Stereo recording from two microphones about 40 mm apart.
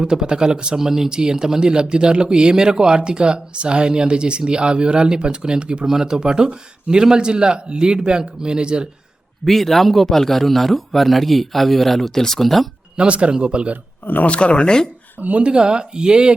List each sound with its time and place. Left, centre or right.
0.0 s speech: centre
0.8 s speech: centre
5.8 s speech: centre
9.4 s a man's voice: centre
13.0 s speech: right
14.0 s speech: left
14.3 s speech: left
15.2 s speech: right
15.4 s speech: right